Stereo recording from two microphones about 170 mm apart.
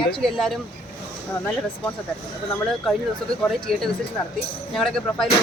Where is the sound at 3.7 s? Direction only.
Centre (ahead or behind).